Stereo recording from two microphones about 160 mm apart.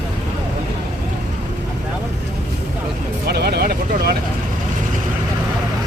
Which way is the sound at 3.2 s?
80° right.